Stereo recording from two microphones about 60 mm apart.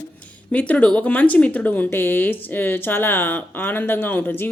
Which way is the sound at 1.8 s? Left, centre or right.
Left.